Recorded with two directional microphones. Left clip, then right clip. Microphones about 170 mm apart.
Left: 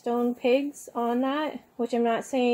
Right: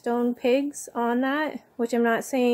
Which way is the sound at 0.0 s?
15° right (ahead or behind).